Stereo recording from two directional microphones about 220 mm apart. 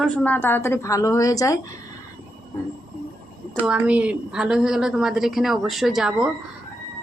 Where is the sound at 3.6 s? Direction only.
5° right (ahead or behind).